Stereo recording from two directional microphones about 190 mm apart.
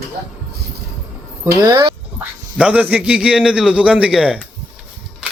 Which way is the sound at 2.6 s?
10° right (ahead or behind).